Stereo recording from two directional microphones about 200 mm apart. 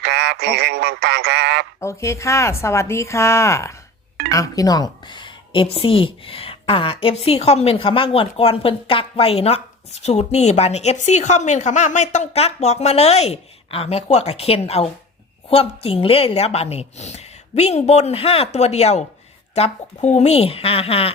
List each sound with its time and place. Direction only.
0.0 s a sound: 55° right (ahead or behind)
1.8 s a woman's voice: 15° left (ahead or behind)
4.3 s music: 15° left (ahead or behind)
5.7 s a woman's voice: 25° left (ahead or behind)